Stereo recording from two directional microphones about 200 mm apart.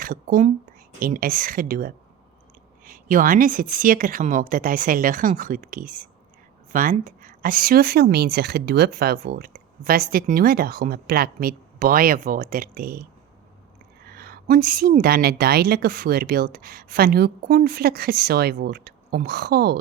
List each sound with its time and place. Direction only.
0.0 s speech: 45° right (ahead or behind)